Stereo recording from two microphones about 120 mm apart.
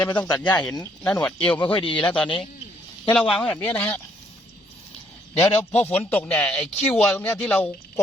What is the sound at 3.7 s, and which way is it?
Speech, 15° left (ahead or behind).